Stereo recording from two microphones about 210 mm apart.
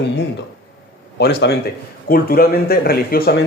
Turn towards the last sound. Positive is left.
turn(degrees=50)  # may be behind; listen again after turning